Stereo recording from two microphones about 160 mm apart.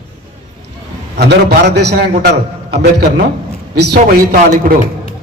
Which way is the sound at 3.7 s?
65° right (ahead or behind).